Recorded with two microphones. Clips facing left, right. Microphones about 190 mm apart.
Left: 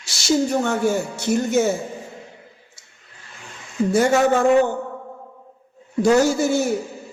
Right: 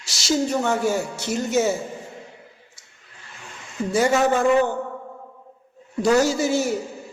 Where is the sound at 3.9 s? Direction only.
55° left (ahead or behind).